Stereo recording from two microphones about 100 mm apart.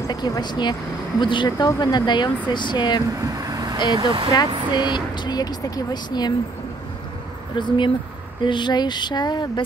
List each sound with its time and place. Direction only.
0.1 s speech: 45° left (ahead or behind)
3.1 s vehicle: 35° right (ahead or behind)
3.9 s speech: 50° right (ahead or behind)
4.7 s speech: 50° left (ahead or behind)
7.5 s speech: 50° left (ahead or behind)